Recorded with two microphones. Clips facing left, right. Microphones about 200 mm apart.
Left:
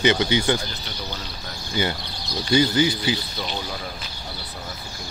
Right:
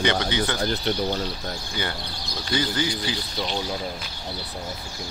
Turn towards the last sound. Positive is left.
turn(degrees=5)  # may be behind; listen again after turning